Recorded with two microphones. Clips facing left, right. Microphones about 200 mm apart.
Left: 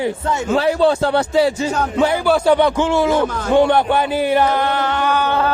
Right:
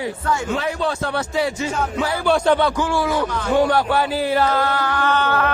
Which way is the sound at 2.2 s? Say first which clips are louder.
Left 1 dB; 5° left (ahead or behind).